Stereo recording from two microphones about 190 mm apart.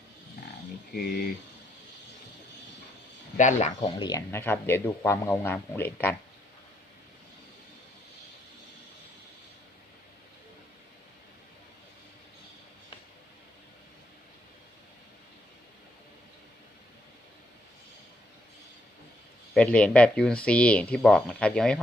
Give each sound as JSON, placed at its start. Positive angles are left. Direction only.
{"t": 0.9, "sound": "speech", "side_deg": 55}
{"t": 3.3, "sound": "speech", "side_deg": 40}
{"t": 3.9, "sound": "speech", "side_deg": 20}
{"t": 19.5, "sound": "speech", "side_deg": 5}